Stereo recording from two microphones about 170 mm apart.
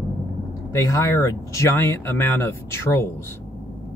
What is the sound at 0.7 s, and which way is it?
Speech, 15° left (ahead or behind).